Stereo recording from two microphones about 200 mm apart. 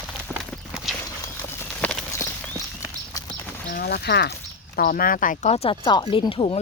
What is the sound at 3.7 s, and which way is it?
Speech, 50° left (ahead or behind).